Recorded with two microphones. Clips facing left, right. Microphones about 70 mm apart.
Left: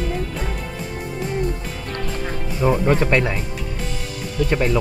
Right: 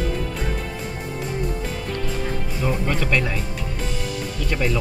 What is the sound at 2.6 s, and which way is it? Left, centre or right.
Speech, left.